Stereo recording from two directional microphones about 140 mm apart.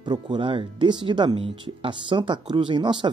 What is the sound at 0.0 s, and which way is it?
Speech, 35° right (ahead or behind).